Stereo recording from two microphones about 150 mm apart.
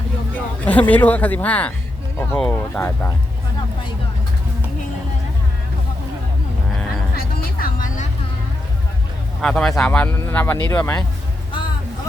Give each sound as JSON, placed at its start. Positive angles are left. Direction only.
{"t": 0.3, "sound": "speech", "side_deg": 10}
{"t": 7.2, "sound": "vehicle", "side_deg": 65}
{"t": 9.4, "sound": "speech", "side_deg": 5}